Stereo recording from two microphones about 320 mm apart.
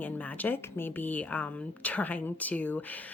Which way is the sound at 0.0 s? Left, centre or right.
Centre.